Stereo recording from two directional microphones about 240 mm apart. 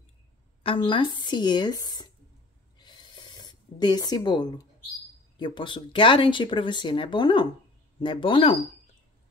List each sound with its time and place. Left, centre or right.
0.7 s speech: left
2.8 s a sound: centre
5.4 s speech: centre